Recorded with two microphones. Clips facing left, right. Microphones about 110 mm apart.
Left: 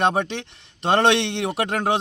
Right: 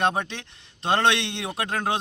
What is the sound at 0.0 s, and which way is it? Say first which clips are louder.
A man's voice: left 4 dB; 25° left (ahead or behind).